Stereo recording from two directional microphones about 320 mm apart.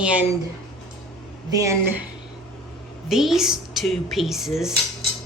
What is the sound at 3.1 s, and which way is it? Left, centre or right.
A woman's voice, centre.